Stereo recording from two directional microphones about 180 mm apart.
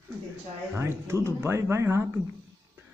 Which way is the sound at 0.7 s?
15° right (ahead or behind).